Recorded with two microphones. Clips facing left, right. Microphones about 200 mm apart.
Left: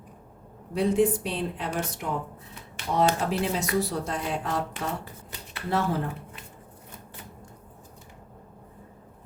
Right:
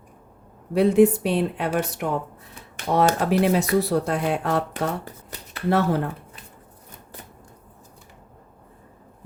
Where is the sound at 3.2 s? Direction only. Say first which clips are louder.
Right 7 dB; 65° right (ahead or behind).